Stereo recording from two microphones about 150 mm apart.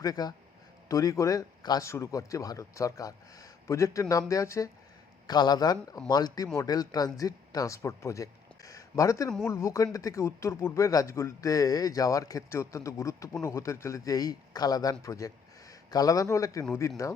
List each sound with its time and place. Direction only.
0.0 s speech: 25° left (ahead or behind)